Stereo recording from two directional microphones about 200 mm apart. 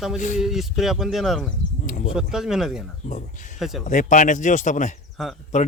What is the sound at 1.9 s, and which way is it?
Speech, 40° left (ahead or behind).